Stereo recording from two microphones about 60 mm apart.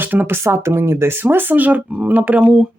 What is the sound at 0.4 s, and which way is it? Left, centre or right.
Speech, right.